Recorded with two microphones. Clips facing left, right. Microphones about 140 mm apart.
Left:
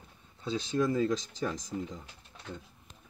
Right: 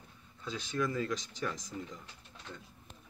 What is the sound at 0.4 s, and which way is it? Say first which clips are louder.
Speech: left 5 dB; 30° left (ahead or behind).